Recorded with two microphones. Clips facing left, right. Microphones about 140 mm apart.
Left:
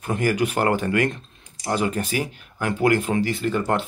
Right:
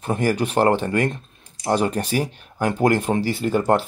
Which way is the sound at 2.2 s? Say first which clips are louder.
Right 4 dB; 40° right (ahead or behind).